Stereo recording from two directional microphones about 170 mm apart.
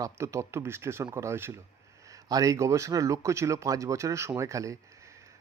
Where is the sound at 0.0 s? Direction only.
15° right (ahead or behind).